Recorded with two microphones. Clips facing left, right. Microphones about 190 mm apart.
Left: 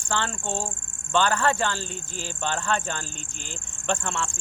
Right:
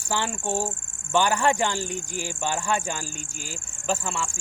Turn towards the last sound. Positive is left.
turn(degrees=-5)  # may be behind; listen again after turning